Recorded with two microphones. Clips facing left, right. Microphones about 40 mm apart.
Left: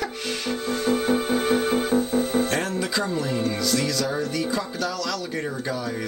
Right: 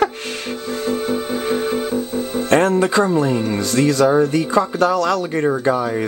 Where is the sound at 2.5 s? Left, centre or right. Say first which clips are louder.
Right 11 dB; right.